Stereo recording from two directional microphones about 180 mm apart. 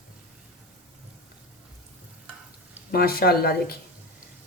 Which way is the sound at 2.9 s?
55° left (ahead or behind).